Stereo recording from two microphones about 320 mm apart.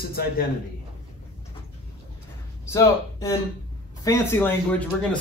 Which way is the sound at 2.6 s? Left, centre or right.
Centre.